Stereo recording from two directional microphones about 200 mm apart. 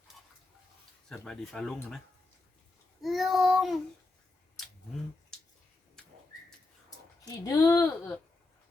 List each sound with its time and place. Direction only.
1.0 s speech: 5° left (ahead or behind)
3.0 s speech: centre (ahead or behind)
5.3 s a sound: 5° left (ahead or behind)
7.3 s speech: 15° left (ahead or behind)